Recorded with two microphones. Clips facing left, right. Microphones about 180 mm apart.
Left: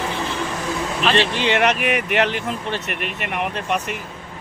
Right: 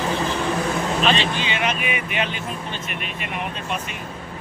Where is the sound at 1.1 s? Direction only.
70° left (ahead or behind).